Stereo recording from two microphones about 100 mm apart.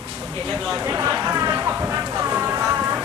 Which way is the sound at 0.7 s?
25° right (ahead or behind).